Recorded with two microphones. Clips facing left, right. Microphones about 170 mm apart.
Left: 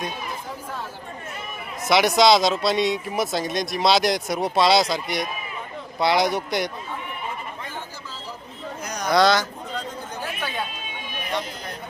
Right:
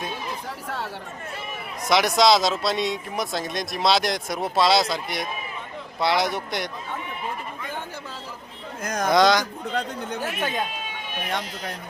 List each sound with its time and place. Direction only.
1.8 s speech: centre (ahead or behind)
9.0 s speech: 20° right (ahead or behind)
9.7 s speech: 55° right (ahead or behind)